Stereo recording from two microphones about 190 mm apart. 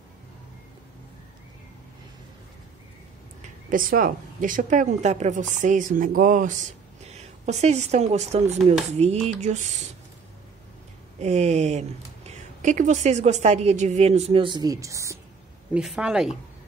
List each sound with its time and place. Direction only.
3.7 s a woman's voice: 45° right (ahead or behind)
11.1 s a woman's voice: 35° right (ahead or behind); by 15.1 s 15° right (ahead or behind)
15.7 s a woman's voice: 5° right (ahead or behind)